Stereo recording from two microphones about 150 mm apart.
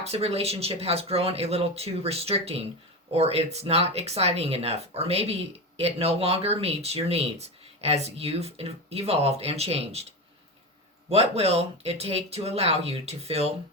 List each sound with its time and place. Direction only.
0.0 s speech: 45° right (ahead or behind)
11.1 s speech: 45° right (ahead or behind)